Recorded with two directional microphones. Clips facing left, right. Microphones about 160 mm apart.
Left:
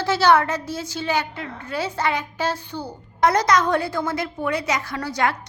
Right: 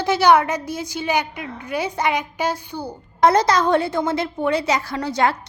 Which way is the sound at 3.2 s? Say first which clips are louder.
Right 2 dB; 30° right (ahead or behind).